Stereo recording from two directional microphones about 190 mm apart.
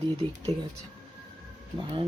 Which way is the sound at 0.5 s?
35° right (ahead or behind).